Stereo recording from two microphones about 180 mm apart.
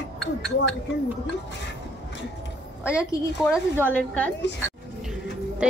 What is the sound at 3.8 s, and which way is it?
Speech, 10° left (ahead or behind).